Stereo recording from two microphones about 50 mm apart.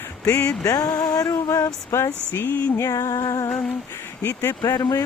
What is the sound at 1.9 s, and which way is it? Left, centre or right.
Speech, left.